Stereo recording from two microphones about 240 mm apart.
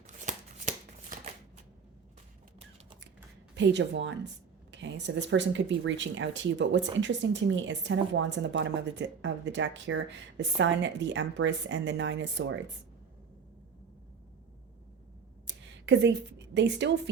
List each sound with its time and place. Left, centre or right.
0.2 s shuffling cards: right
3.5 s a woman's voice: right
15.4 s a sound: right